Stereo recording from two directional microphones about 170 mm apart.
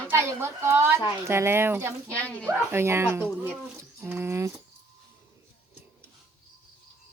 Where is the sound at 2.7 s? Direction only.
15° right (ahead or behind).